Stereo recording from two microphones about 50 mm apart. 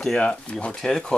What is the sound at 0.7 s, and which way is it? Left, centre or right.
Speech, centre.